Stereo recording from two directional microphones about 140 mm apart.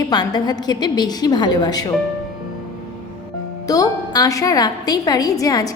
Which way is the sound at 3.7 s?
25° left (ahead or behind).